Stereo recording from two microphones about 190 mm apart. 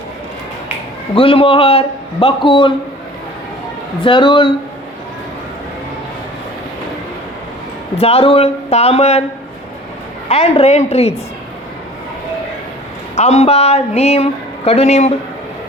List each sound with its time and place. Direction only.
1.1 s a man's voice: 30° left (ahead or behind)
4.0 s a man's voice: 25° left (ahead or behind)
7.9 s a woman's voice: 30° left (ahead or behind)
10.2 s a woman's voice: 35° left (ahead or behind)
13.1 s a woman's voice: 35° left (ahead or behind)